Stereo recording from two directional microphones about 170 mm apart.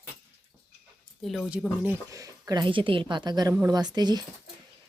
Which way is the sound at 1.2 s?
Centre (ahead or behind).